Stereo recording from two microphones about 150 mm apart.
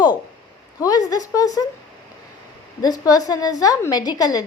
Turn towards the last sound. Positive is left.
turn(degrees=25)  # may be behind; listen again after turning